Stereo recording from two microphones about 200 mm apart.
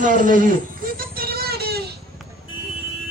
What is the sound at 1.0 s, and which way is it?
Vehicle, 50° right (ahead or behind).